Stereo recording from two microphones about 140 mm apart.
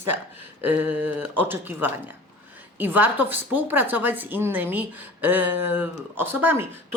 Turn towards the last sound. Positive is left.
turn(degrees=-15)  # may be behind; listen again after turning